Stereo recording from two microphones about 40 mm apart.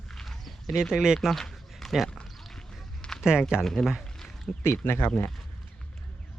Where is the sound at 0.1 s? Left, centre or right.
Centre.